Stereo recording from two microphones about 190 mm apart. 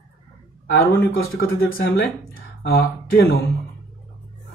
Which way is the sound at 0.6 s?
65° left (ahead or behind).